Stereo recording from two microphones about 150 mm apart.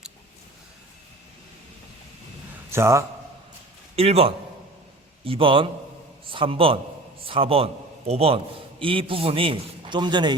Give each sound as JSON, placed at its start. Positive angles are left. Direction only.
{"t": 2.7, "sound": "a man's voice", "side_deg": -20}
{"t": 3.9, "sound": "a man's voice", "side_deg": -40}